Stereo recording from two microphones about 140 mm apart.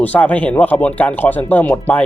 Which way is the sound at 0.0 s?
10° left (ahead or behind).